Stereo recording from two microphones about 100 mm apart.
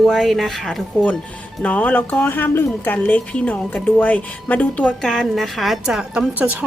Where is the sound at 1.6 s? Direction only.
15° left (ahead or behind).